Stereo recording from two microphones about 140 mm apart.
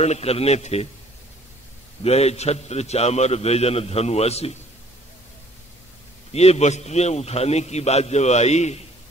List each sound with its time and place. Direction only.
0.0 s a man's voice: 50° left (ahead or behind)
2.0 s a man's voice: 50° left (ahead or behind)
6.3 s a man's voice: 50° left (ahead or behind)